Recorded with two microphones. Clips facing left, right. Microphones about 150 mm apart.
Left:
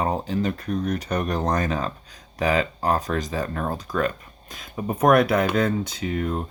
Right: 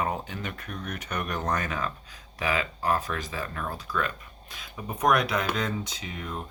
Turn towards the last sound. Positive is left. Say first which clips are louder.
# left 10 dB
turn(degrees=50)  # may be behind; listen again after turning